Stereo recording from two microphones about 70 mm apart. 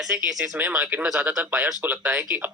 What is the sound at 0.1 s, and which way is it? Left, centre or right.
Speech, right.